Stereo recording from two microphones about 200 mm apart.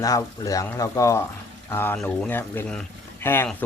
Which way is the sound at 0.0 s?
15° left (ahead or behind).